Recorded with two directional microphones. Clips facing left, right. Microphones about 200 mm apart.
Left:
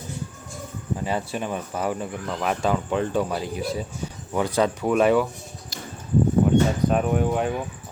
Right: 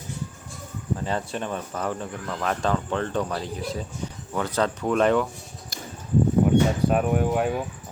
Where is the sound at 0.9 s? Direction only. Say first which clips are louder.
Left 2 dB; 10° left (ahead or behind).